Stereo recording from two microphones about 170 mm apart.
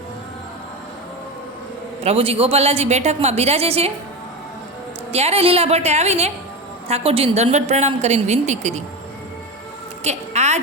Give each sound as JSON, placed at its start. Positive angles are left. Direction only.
{"t": 2.0, "sound": "a woman's voice", "side_deg": -35}
{"t": 5.1, "sound": "a woman's voice", "side_deg": -35}
{"t": 10.0, "sound": "a sound", "side_deg": -40}